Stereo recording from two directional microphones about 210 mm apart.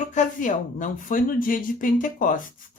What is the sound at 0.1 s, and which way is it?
Speech, 35° left (ahead or behind).